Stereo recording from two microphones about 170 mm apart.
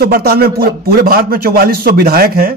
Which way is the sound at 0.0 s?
65° right (ahead or behind).